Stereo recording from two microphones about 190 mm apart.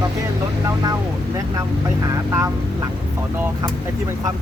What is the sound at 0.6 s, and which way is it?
Speech, 20° right (ahead or behind).